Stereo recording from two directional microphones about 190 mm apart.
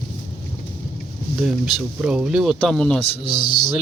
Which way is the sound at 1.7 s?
5° right (ahead or behind).